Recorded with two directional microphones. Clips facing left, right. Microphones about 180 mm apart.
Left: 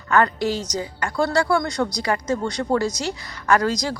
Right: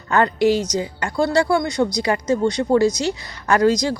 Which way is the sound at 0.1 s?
20° right (ahead or behind).